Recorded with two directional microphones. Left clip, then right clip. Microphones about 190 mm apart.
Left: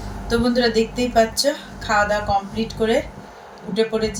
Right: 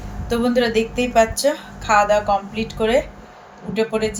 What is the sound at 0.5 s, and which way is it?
Speech, 35° right (ahead or behind).